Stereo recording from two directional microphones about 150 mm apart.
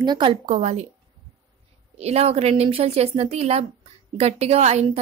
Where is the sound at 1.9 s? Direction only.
45° right (ahead or behind).